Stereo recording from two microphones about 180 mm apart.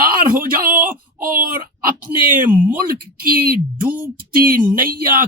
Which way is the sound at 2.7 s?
55° right (ahead or behind).